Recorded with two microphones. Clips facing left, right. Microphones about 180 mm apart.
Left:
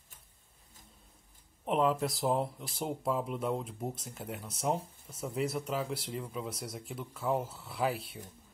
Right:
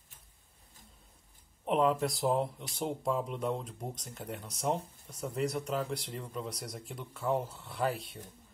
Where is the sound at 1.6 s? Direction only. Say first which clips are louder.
Right 1 dB; centre (ahead or behind).